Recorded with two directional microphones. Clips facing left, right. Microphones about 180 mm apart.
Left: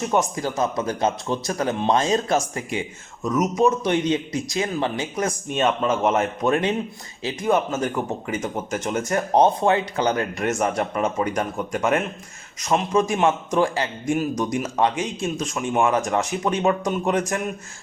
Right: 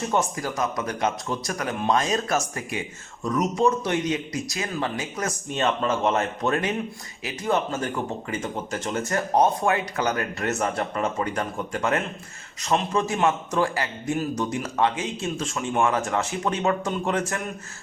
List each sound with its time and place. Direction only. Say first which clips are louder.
0.1 s speech: left 3 dB; 15° left (ahead or behind)
0.4 s a man's voice: left 4 dB; 25° left (ahead or behind)